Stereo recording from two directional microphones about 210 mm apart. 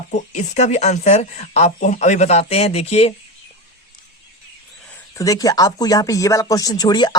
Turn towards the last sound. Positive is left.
turn(degrees=20)  # may be behind; listen again after turning